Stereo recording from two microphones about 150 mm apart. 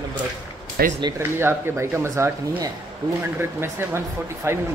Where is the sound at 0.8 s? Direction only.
90° right.